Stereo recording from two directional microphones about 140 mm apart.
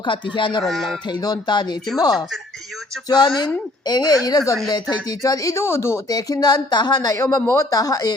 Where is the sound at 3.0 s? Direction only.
30° left (ahead or behind).